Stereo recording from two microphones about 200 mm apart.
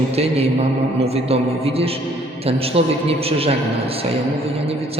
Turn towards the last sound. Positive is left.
turn(degrees=-30)  # may be behind; listen again after turning